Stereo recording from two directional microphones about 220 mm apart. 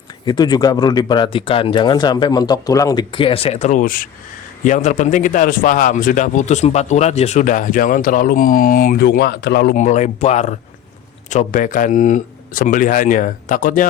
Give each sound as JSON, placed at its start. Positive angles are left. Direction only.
{"t": 0.3, "sound": "a man's voice", "side_deg": 20}
{"t": 9.7, "sound": "a man's voice", "side_deg": 30}